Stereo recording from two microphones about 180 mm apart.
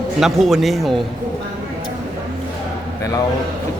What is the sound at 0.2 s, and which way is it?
Speech, centre (ahead or behind).